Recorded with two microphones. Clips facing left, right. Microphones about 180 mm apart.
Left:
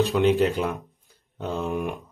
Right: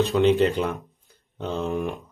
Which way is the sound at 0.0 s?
Centre (ahead or behind).